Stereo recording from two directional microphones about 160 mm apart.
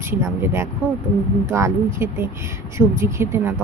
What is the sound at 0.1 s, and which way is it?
Speech, 15° right (ahead or behind).